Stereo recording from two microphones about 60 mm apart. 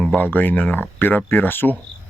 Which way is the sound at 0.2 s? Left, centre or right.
Left.